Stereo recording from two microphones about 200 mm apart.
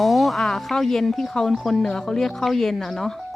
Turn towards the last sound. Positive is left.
turn(degrees=0)  # may be behind; listen again after turning